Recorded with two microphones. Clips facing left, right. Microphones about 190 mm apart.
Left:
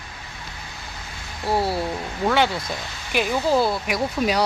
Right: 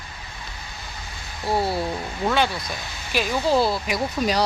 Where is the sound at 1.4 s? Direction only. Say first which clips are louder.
Left 1 dB; 10° left (ahead or behind).